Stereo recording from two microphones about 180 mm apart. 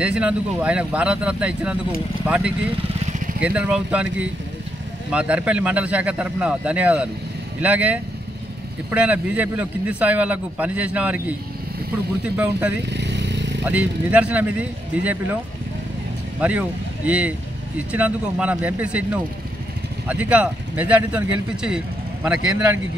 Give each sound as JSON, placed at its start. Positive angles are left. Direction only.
{"t": 0.0, "sound": "speech", "side_deg": -5}
{"t": 12.4, "sound": "speech", "side_deg": -10}
{"t": 12.9, "sound": "motorcycle", "side_deg": -75}
{"t": 13.7, "sound": "speech", "side_deg": -10}
{"t": 16.3, "sound": "speech", "side_deg": -10}